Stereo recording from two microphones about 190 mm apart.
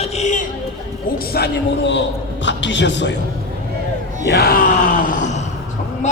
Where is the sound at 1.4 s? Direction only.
55° left (ahead or behind).